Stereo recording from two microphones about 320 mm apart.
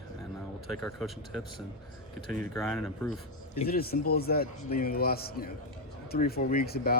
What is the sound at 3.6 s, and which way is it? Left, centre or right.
Speech, left.